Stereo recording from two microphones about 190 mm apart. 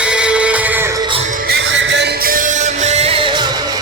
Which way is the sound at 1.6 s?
80° right.